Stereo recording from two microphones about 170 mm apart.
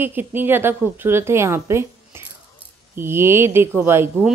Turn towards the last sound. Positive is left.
turn(degrees=-15)  # may be behind; listen again after turning